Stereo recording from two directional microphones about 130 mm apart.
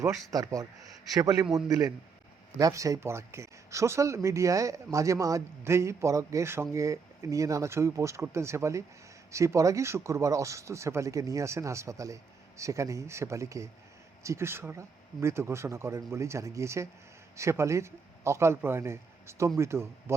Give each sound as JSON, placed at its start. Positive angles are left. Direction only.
{"t": 0.0, "sound": "speech", "side_deg": -25}